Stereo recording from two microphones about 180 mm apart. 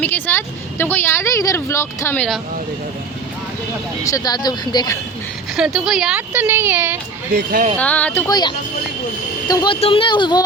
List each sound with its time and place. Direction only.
0.0 s speech: 10° left (ahead or behind)
4.0 s speech: 20° left (ahead or behind)
5.5 s speech: 5° right (ahead or behind)
7.3 s speech: 50° right (ahead or behind)
7.8 s speech: 10° left (ahead or behind)
8.3 s speech: 25° left (ahead or behind)